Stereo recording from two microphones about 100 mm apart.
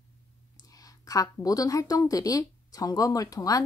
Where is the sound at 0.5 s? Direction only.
35° left (ahead or behind).